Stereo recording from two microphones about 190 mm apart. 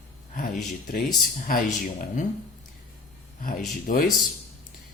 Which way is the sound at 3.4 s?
50° left (ahead or behind).